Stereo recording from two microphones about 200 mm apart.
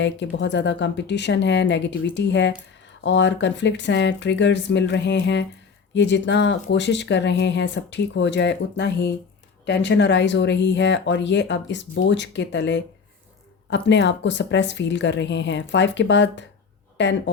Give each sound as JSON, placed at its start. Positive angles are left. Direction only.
{"t": 0.0, "sound": "speech", "side_deg": 65}